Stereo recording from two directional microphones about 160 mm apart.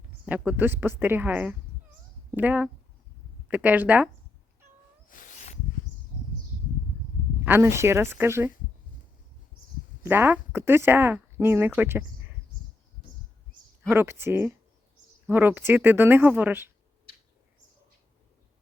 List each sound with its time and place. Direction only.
0.3 s speech: 10° right (ahead or behind)
5.0 s a sound: 55° left (ahead or behind)
7.4 s speech: 15° right (ahead or behind)
10.0 s speech: 15° right (ahead or behind)
13.9 s speech: 15° right (ahead or behind)